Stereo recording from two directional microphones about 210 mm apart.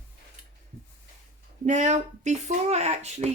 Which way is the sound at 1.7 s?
35° right (ahead or behind).